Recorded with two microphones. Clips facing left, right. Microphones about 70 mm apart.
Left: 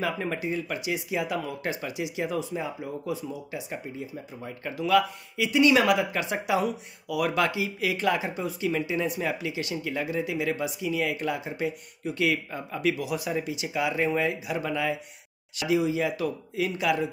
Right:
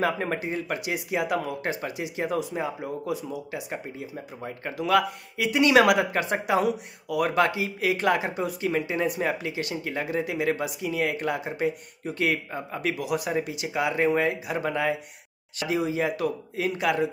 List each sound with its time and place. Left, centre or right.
0.0 s speech: right
4.4 s speech: right
4.7 s speech: right